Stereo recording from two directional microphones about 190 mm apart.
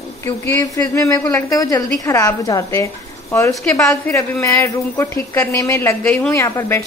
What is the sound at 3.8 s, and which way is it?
A woman's voice, 15° left (ahead or behind).